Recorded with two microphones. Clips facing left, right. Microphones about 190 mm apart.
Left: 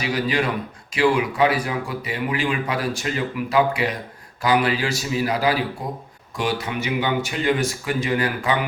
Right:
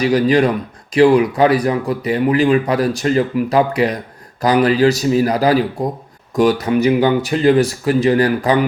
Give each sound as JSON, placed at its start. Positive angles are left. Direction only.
{"t": 0.0, "sound": "speech", "side_deg": -40}